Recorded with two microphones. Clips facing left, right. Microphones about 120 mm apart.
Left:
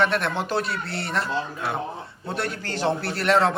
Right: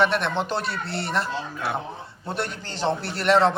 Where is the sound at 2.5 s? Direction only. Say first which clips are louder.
Left 5 dB; 45° left (ahead or behind).